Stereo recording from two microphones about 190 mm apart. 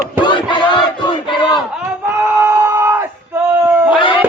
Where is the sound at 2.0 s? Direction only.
10° right (ahead or behind).